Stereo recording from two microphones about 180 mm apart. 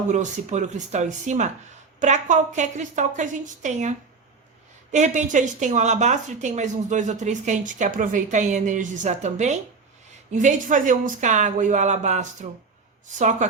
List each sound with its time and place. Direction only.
0.1 s a woman's voice: 40° right (ahead or behind)